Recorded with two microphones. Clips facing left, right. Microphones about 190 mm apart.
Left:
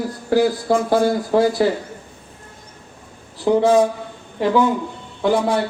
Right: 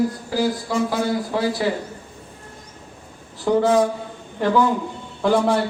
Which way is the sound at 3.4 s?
20° left (ahead or behind).